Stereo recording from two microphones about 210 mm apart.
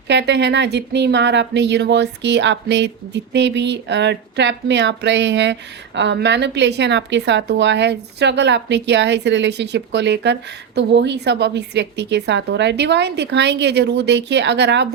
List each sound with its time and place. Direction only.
0.1 s speech: 55° right (ahead or behind)